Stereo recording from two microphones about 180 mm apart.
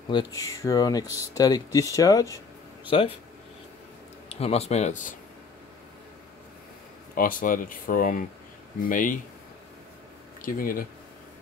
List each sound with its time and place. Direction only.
0.1 s speech: 20° left (ahead or behind)
4.3 s speech: 35° left (ahead or behind)
7.2 s speech: 50° left (ahead or behind)
10.4 s speech: 50° left (ahead or behind)